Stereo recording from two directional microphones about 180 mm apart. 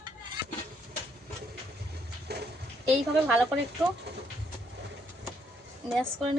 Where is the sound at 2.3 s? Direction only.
65° right (ahead or behind).